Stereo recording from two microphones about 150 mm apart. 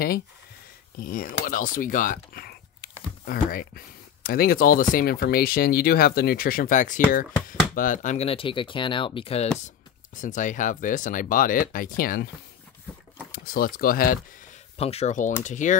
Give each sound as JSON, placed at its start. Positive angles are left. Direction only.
{"t": 0.9, "sound": "speech", "side_deg": 70}
{"t": 4.9, "sound": "speech", "side_deg": 90}
{"t": 10.1, "sound": "speech", "side_deg": 55}
{"t": 13.3, "sound": "speech", "side_deg": 80}
{"t": 14.8, "sound": "speech", "side_deg": 45}